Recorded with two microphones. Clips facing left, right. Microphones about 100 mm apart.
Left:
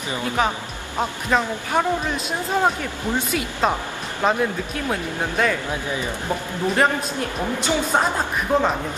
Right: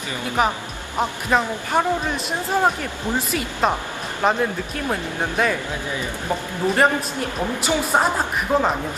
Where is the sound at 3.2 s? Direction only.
Centre (ahead or behind).